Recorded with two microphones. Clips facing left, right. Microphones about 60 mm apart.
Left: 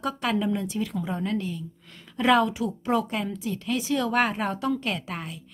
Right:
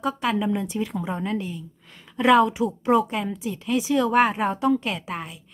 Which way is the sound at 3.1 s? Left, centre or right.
Centre.